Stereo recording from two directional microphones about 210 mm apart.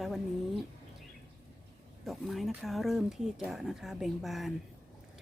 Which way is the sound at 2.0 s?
Centre (ahead or behind).